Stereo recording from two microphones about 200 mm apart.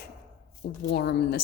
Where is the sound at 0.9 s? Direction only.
55° left (ahead or behind).